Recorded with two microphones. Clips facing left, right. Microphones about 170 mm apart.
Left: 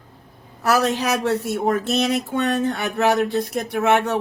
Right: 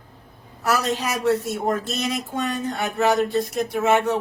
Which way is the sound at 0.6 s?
65° left (ahead or behind).